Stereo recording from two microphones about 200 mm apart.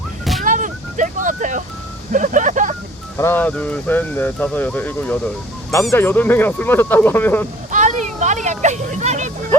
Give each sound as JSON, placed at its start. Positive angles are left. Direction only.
{"t": 0.4, "sound": "vehicle", "side_deg": -40}
{"t": 2.1, "sound": "speech", "side_deg": -40}
{"t": 3.2, "sound": "speech", "side_deg": 10}
{"t": 7.7, "sound": "vehicle", "side_deg": -35}